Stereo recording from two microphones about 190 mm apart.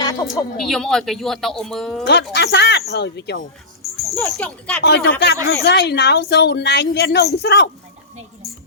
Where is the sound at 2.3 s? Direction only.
60° left (ahead or behind).